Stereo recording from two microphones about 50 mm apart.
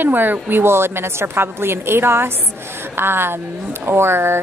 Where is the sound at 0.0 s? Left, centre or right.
Right.